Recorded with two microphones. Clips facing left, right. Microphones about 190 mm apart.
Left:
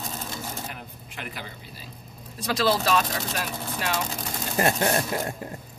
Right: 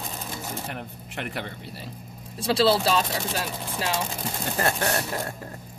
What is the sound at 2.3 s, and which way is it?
Speech, 30° right (ahead or behind).